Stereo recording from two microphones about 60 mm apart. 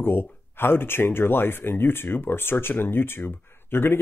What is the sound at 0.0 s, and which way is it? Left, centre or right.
Speech, left.